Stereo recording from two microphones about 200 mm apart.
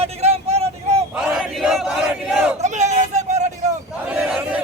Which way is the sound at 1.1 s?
Centre (ahead or behind).